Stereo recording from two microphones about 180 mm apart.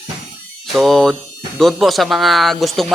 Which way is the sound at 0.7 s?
Centre (ahead or behind).